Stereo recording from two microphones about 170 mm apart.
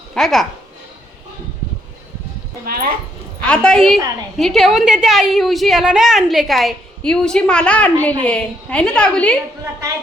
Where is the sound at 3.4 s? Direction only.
5° left (ahead or behind).